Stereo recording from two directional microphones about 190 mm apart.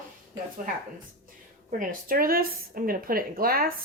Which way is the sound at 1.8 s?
50° right (ahead or behind).